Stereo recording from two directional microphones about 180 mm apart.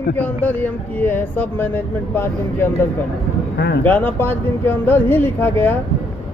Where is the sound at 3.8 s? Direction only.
10° left (ahead or behind).